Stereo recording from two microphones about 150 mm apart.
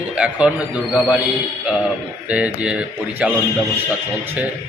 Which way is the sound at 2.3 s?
10° right (ahead or behind).